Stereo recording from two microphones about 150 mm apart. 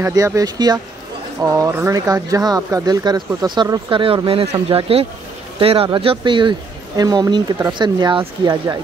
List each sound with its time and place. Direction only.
0.0 s speech: 20° right (ahead or behind)
1.4 s speech: 15° right (ahead or behind)